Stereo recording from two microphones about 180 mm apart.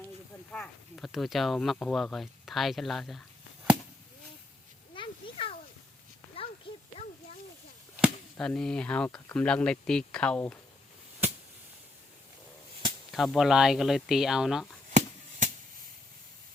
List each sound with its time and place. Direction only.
0.5 s speech: 5° left (ahead or behind)
4.9 s a sound: 30° left (ahead or behind)
6.7 s children playing: 30° left (ahead or behind)
8.4 s speech: 5° left (ahead or behind)
13.1 s speech: centre (ahead or behind)
14.9 s a sound: 45° right (ahead or behind)